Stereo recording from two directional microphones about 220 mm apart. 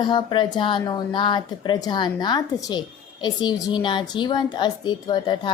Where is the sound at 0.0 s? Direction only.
20° left (ahead or behind).